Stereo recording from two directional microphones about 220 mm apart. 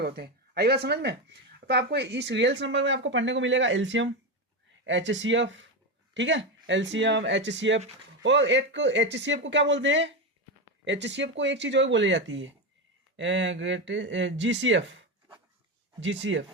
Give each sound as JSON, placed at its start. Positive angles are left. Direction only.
{"t": 0.0, "sound": "speech", "side_deg": -45}